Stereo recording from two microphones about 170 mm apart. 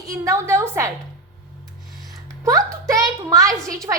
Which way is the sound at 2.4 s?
20° right (ahead or behind).